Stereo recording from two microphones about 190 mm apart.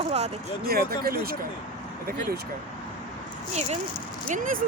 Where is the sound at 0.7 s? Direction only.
55° right (ahead or behind).